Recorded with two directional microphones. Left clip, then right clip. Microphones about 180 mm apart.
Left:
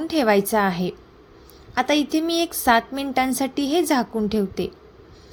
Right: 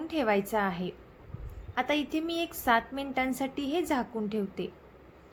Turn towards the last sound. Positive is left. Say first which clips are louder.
# left 10 dB
turn(degrees=40)  # may be behind; listen again after turning